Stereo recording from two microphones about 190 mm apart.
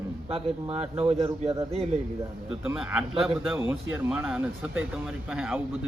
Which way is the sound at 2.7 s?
5° right (ahead or behind).